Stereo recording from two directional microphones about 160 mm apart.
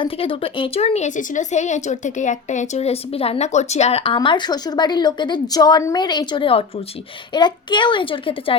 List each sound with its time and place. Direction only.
0.0 s a woman's voice: 35° left (ahead or behind)